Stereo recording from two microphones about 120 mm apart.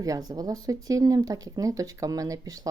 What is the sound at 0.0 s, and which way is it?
Speech, 30° right (ahead or behind).